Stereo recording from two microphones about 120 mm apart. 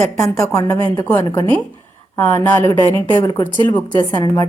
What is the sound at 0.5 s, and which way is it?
Speech, 30° left (ahead or behind).